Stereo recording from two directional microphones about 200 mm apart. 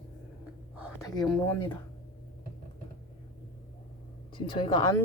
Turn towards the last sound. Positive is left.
turn(degrees=25)  # may be behind; listen again after turning